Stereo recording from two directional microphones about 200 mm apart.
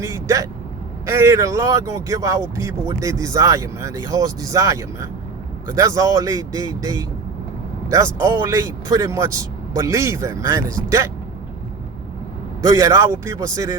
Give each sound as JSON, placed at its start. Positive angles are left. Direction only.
{"t": 0.0, "sound": "vehicle", "side_deg": -15}
{"t": 1.1, "sound": "speech", "side_deg": -15}
{"t": 12.6, "sound": "speech", "side_deg": -15}